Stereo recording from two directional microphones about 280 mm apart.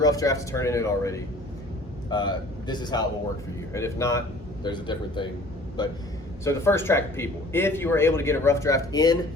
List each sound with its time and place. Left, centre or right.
0.0 s speech: centre